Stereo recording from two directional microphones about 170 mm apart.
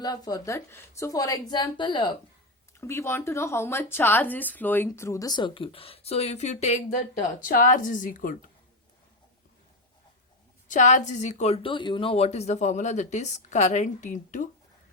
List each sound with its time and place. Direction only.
0.0 s a woman's voice: 20° left (ahead or behind)
2.8 s a woman's voice: 15° left (ahead or behind); by 8.4 s 50° left (ahead or behind)
10.7 s a woman's voice: 45° left (ahead or behind)